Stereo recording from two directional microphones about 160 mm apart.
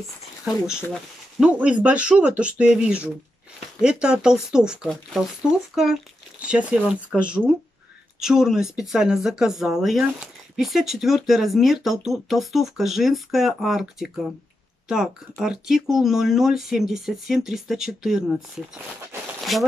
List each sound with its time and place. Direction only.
1.4 s speech: 5° right (ahead or behind)
5.8 s speech: centre (ahead or behind)